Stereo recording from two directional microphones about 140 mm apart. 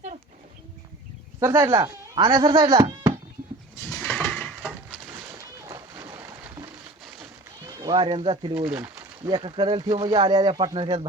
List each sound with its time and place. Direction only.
1.4 s speech: 20° right (ahead or behind); by 2.6 s 35° right (ahead or behind)
2.6 s speech: 25° right (ahead or behind)
3.8 s a sound: 15° left (ahead or behind)
5.3 s boat: 25° right (ahead or behind)
5.9 s a sound: 20° right (ahead or behind)
7.0 s run: centre (ahead or behind)
7.7 s speech: 30° right (ahead or behind)
8.8 s speech: 25° right (ahead or behind)